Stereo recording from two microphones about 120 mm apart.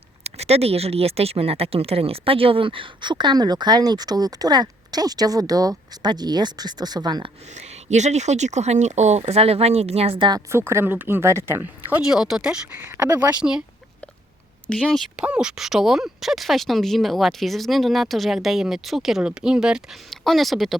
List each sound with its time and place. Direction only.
0.3 s speech: 60° right (ahead or behind); by 7.3 s 35° right (ahead or behind)
7.5 s speech: 75° right (ahead or behind)
9.2 s speech: 55° right (ahead or behind)
10.5 s speech: 20° right (ahead or behind)
14.7 s speech: 10° left (ahead or behind)
15.1 s speech: 10° right (ahead or behind)